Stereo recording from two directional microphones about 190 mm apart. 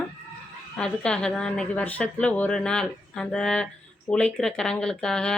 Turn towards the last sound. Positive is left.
turn(degrees=5)  # may be behind; listen again after turning